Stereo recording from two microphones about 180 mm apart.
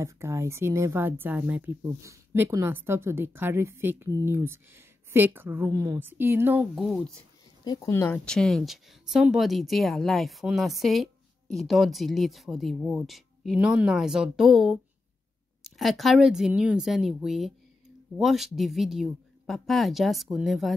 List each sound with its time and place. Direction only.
0.0 s speech: 15° right (ahead or behind); by 7.2 s centre (ahead or behind)
7.6 s speech: 20° left (ahead or behind)
8.3 s speech: 5° left (ahead or behind)